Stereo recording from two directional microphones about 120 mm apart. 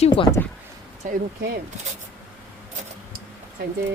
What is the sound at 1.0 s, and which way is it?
Speech, 90° right.